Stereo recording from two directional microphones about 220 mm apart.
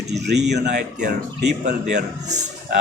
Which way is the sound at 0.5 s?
50° right (ahead or behind).